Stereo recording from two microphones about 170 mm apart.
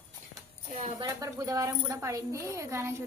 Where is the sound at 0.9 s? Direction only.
20° right (ahead or behind).